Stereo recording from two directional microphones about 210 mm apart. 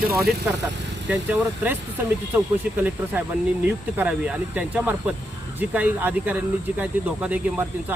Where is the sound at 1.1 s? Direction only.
10° right (ahead or behind).